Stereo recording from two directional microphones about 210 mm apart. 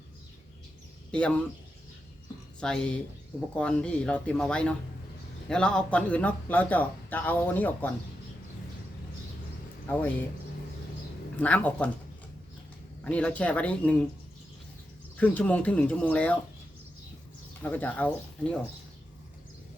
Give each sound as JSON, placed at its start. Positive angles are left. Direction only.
{"t": 1.1, "sound": "speech", "side_deg": 5}
{"t": 2.6, "sound": "speech", "side_deg": 5}
{"t": 9.8, "sound": "speech", "side_deg": 10}
{"t": 11.3, "sound": "speech", "side_deg": 5}
{"t": 13.1, "sound": "speech", "side_deg": 5}
{"t": 15.2, "sound": "speech", "side_deg": 5}
{"t": 17.6, "sound": "speech", "side_deg": 5}